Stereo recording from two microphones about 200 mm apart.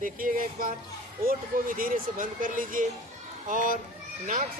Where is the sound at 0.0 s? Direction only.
45° right (ahead or behind).